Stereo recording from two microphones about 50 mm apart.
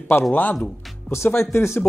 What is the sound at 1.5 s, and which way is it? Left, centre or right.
Speech, left.